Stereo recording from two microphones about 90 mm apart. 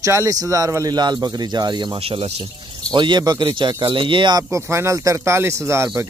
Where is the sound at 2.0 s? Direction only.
90° right.